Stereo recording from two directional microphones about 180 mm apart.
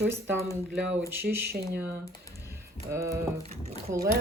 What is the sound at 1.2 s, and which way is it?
Speech, 10° right (ahead or behind).